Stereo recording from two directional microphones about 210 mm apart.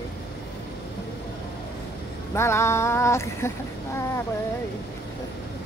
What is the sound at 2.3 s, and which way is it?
Speech, 10° left (ahead or behind).